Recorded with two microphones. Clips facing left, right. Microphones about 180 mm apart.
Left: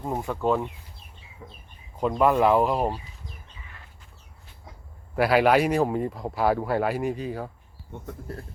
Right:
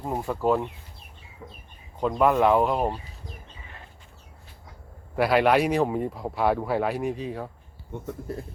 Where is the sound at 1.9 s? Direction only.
Centre (ahead or behind).